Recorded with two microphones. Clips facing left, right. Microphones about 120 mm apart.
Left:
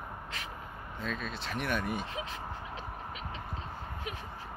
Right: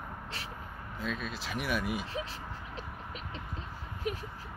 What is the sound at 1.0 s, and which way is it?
Speech, 5° right (ahead or behind).